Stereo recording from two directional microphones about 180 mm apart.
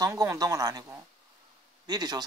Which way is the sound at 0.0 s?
20° right (ahead or behind).